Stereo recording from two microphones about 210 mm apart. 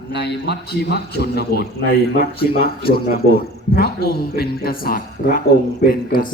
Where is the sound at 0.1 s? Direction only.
50° left (ahead or behind).